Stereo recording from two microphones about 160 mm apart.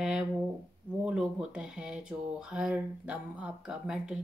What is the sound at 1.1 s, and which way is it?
A woman's voice, 5° right (ahead or behind).